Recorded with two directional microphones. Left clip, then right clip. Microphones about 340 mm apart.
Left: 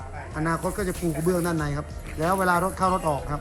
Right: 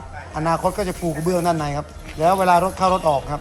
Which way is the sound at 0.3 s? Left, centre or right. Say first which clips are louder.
Right 7 dB; centre.